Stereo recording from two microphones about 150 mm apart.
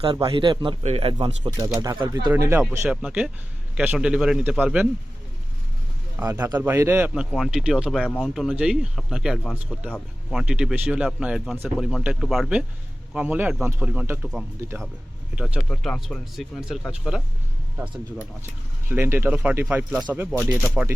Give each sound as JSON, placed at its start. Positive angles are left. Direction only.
{"t": 0.0, "sound": "speech", "side_deg": -35}
{"t": 1.5, "sound": "speech", "side_deg": -25}
{"t": 2.3, "sound": "speech", "side_deg": -15}
{"t": 2.9, "sound": "speech", "side_deg": -5}
{"t": 6.1, "sound": "speech", "side_deg": -10}
{"t": 7.1, "sound": "speech", "side_deg": -5}
{"t": 15.7, "sound": "speech", "side_deg": 5}
{"t": 18.9, "sound": "speech", "side_deg": -15}